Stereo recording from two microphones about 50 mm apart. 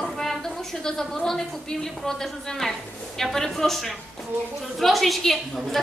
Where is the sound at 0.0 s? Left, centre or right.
Centre.